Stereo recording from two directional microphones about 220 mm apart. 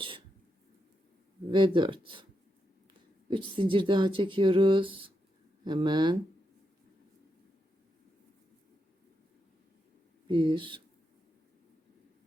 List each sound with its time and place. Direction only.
1.5 s speech: 20° right (ahead or behind)
3.2 s speech: 20° right (ahead or behind)
10.2 s speech: 20° right (ahead or behind)